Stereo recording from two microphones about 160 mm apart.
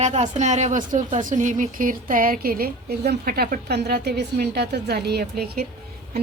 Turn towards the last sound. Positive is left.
turn(degrees=-75)  # may be behind; listen again after turning